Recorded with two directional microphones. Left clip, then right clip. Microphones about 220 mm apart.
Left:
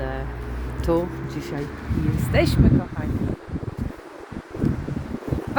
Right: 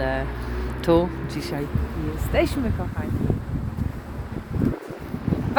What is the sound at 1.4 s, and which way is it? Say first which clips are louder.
Speech: right 2 dB; 5° left (ahead or behind).